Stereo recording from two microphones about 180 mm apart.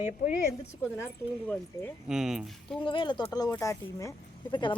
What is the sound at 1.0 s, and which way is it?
Speech, 10° left (ahead or behind).